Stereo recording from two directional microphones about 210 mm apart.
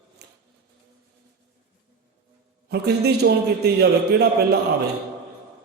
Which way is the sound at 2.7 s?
50° right (ahead or behind).